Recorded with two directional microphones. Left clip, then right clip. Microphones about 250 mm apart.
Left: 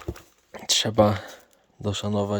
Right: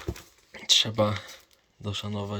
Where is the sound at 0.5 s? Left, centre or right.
Left.